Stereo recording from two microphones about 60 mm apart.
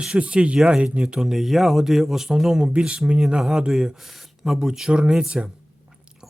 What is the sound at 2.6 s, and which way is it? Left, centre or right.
Speech, centre.